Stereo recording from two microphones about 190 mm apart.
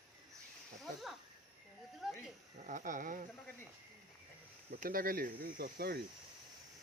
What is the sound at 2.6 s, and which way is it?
Speech, 45° right (ahead or behind).